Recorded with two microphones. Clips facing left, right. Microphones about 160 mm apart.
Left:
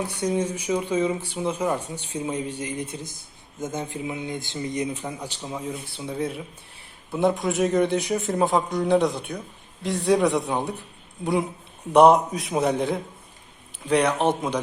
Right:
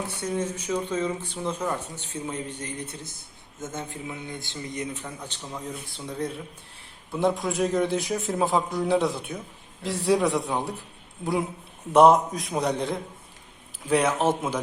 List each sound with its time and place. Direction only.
0.1 s speech: 15° left (ahead or behind); by 14.6 s 5° right (ahead or behind)